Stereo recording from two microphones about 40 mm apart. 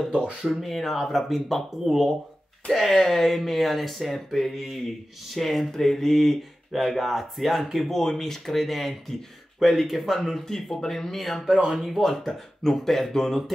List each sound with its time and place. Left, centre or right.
0.5 s speech: centre
11.4 s speech: centre
11.7 s speech: centre
12.6 s speech: centre